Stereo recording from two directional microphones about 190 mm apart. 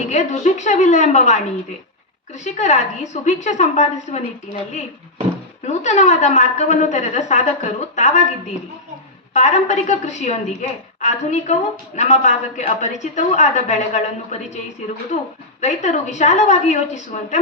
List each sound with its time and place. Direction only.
0.0 s a woman's voice: 35° left (ahead or behind)
5.6 s a woman's voice: 40° left (ahead or behind)
9.3 s a woman's voice: 40° left (ahead or behind)